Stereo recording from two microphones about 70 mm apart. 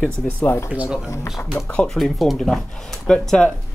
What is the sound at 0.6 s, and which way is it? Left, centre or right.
Speech, centre.